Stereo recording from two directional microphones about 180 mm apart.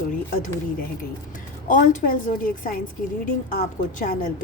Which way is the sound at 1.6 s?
45° left (ahead or behind).